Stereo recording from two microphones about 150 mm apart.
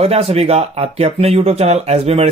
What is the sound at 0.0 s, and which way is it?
Speech, 40° right (ahead or behind).